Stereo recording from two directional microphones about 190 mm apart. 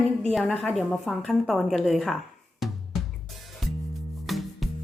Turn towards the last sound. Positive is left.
turn(degrees=0)  # may be behind; listen again after turning